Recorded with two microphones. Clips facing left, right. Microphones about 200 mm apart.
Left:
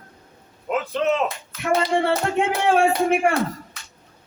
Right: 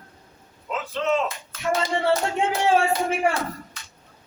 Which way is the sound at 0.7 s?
55° left (ahead or behind).